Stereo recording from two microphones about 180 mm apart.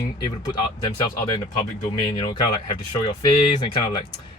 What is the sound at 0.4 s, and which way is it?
Speech, 25° left (ahead or behind).